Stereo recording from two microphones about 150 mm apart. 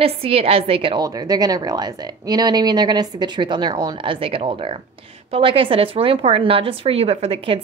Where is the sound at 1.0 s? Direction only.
25° right (ahead or behind).